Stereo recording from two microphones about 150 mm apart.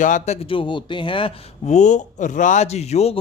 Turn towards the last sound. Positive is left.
turn(degrees=45)  # may be behind; listen again after turning